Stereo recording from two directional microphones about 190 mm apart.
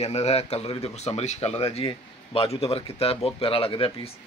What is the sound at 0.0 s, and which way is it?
Speech, 35° left (ahead or behind).